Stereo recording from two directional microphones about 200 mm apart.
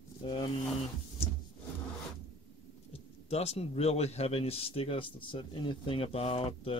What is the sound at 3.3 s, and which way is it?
Speech, 30° left (ahead or behind).